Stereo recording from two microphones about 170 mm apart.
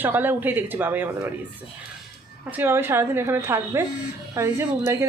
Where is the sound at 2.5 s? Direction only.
10° right (ahead or behind).